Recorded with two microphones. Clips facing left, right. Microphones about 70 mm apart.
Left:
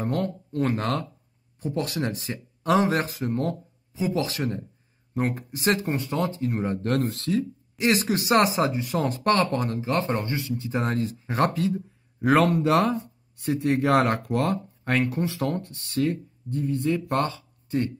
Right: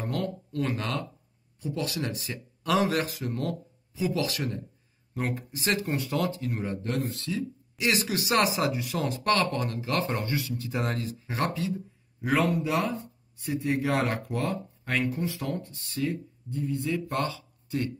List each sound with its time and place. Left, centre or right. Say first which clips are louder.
0.0 s speech: left 4 dB; left
5.1 s speech: left 5 dB; left
6.9 s speech: left 6 dB; left
7.3 s speech: left 6 dB; left
12.6 s speech: left 7 dB; left
17.2 s speech: left 4 dB; left